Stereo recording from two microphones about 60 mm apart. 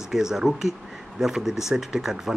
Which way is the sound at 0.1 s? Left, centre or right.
Centre.